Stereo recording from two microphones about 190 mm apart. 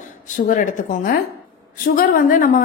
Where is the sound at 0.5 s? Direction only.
45° left (ahead or behind).